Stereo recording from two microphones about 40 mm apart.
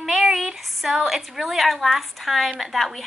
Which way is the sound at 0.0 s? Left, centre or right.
Centre.